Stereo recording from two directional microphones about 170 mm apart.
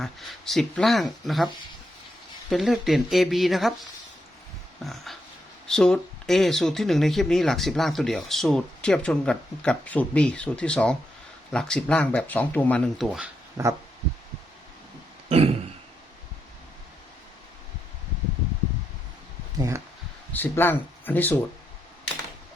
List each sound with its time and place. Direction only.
0.0 s speech: centre (ahead or behind)
2.5 s speech: centre (ahead or behind)
4.8 s speech: centre (ahead or behind)
13.0 s speech: 5° right (ahead or behind)
13.6 s speech: 20° right (ahead or behind)
15.3 s throat clearing: 35° right (ahead or behind)
19.5 s a sound: 15° right (ahead or behind)
20.3 s speech: 10° left (ahead or behind)